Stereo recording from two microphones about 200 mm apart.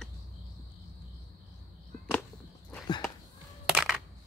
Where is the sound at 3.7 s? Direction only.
Centre (ahead or behind).